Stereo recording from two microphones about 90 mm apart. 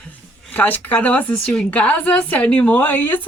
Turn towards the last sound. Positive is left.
turn(degrees=20)  # may be behind; listen again after turning